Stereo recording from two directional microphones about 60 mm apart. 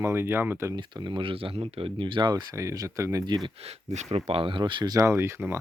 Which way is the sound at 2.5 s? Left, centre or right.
Right.